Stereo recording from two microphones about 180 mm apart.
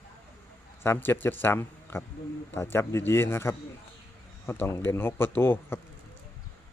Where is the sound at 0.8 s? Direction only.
10° left (ahead or behind).